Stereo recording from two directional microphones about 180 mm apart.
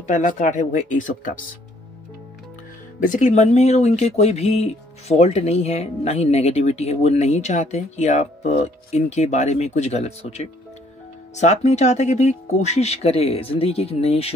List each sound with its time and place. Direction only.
0.0 s speech: 45° left (ahead or behind)
3.0 s speech: 45° left (ahead or behind)